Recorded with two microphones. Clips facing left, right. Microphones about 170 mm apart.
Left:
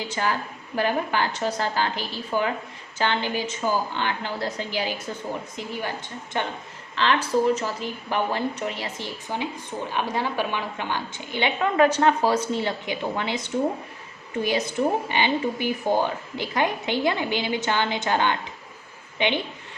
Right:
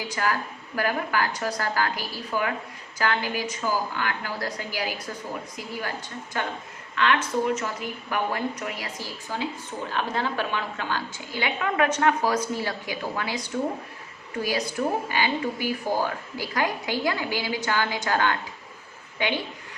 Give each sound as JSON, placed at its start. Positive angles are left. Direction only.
{"t": 0.1, "sound": "speech", "side_deg": 25}
{"t": 6.3, "sound": "speech", "side_deg": 25}